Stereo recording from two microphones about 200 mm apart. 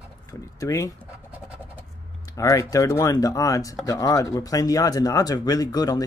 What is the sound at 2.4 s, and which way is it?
Speech, 15° left (ahead or behind).